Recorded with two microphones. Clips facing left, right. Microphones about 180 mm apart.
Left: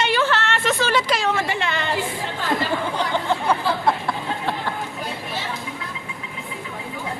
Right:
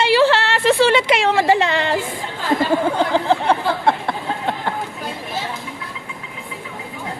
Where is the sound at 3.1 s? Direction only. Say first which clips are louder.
Right 5 dB; 30° right (ahead or behind).